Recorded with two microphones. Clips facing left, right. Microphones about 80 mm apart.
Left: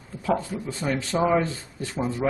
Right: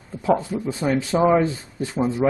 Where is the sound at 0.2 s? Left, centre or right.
Right.